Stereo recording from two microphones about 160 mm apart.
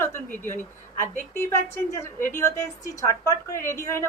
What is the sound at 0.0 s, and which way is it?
A woman's voice, 15° left (ahead or behind).